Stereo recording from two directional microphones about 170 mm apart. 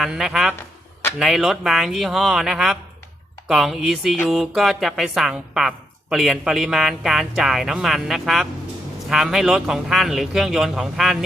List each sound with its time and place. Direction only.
0.0 s speech: centre (ahead or behind)